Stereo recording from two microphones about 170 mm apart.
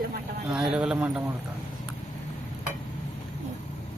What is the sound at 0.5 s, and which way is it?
Speech, 5° right (ahead or behind).